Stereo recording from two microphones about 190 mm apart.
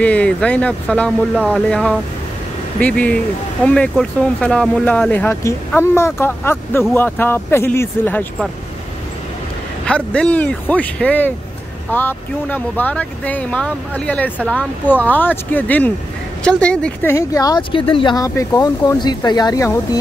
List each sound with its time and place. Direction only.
0.0 s speech: 5° left (ahead or behind)
9.8 s speech: 5° left (ahead or behind)